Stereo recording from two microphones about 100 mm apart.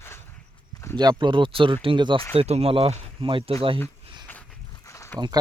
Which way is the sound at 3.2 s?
60° right (ahead or behind).